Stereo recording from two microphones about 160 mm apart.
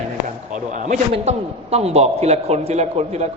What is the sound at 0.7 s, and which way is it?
A man's voice, 45° right (ahead or behind).